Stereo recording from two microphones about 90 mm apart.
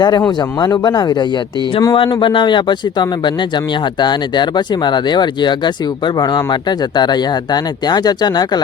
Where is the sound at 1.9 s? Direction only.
65° left (ahead or behind); by 8.6 s 50° left (ahead or behind).